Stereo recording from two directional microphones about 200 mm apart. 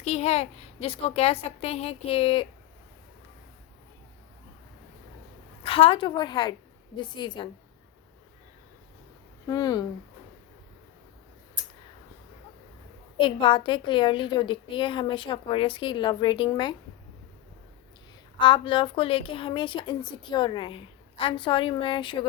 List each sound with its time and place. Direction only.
0.0 s a woman's voice: 30° left (ahead or behind)
5.6 s a woman's voice: 25° left (ahead or behind)
9.5 s a woman's voice: 20° left (ahead or behind)
13.1 s a woman's voice: 25° left (ahead or behind)
18.3 s a woman's voice: 25° left (ahead or behind)